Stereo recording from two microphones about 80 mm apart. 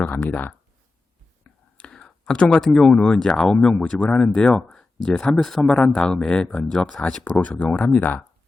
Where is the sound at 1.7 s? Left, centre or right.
Centre.